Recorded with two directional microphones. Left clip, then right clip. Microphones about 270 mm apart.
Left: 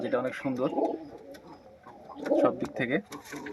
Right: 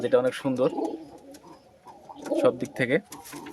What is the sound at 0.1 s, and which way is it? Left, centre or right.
Speech, right.